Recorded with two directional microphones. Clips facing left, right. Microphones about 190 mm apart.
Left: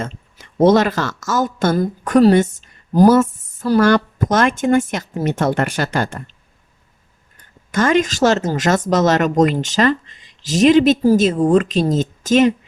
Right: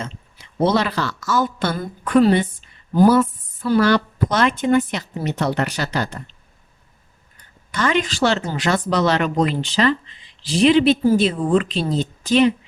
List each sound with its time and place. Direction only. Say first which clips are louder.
0.0 s speech: left 4 dB; 45° left (ahead or behind)
7.3 s speech: left 7 dB; 45° left (ahead or behind)